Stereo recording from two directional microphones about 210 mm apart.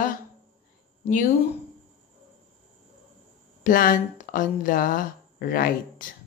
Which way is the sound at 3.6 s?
40° left (ahead or behind).